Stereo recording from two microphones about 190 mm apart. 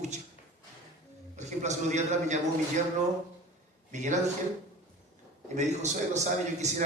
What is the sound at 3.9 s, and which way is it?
Speech, 40° right (ahead or behind).